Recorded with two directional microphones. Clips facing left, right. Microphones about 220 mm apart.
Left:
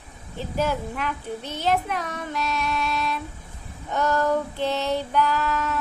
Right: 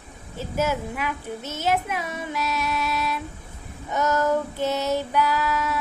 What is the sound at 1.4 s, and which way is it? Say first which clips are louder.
Speech: even; 45° right (ahead or behind).